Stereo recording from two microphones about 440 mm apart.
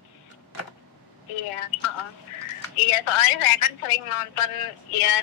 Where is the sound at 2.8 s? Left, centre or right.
Left.